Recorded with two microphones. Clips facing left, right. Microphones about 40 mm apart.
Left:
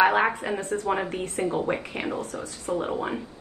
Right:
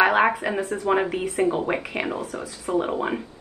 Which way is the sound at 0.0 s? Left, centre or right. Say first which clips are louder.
Right 2 dB; right.